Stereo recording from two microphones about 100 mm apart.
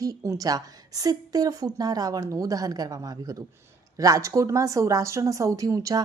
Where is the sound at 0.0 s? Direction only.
35° right (ahead or behind).